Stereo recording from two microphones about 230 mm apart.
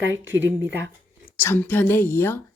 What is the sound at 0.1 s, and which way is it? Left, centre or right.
Speech, right.